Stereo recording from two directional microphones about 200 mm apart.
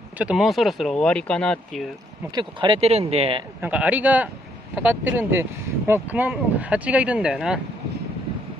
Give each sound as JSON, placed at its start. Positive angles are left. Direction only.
{"t": 0.2, "sound": "speech", "side_deg": -5}
{"t": 2.3, "sound": "speech", "side_deg": -25}
{"t": 3.6, "sound": "speech", "side_deg": -5}